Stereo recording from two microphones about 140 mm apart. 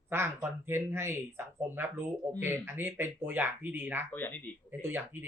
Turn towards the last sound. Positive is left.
turn(degrees=-15)  # may be behind; listen again after turning